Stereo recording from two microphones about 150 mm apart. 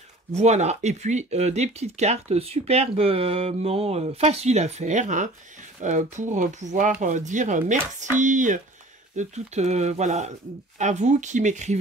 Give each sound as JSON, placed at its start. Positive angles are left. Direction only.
{"t": 0.3, "sound": "speech", "side_deg": -50}